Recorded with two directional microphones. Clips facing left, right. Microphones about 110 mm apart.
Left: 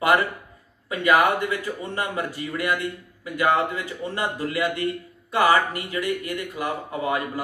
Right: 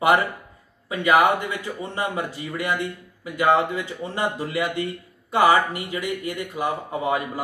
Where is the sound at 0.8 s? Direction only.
20° right (ahead or behind).